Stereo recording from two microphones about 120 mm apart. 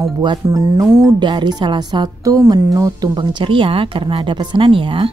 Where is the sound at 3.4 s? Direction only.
45° right (ahead or behind).